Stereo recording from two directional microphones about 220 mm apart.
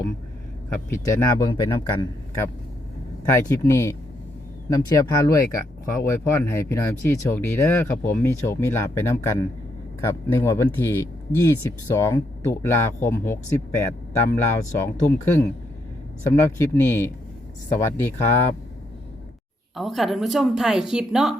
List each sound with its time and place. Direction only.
0.9 s speech: 15° left (ahead or behind)
19.7 s a woman's voice: centre (ahead or behind)